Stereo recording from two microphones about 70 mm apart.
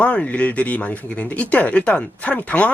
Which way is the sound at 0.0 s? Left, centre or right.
Centre.